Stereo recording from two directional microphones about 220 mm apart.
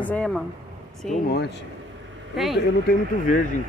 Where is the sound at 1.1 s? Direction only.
45° left (ahead or behind).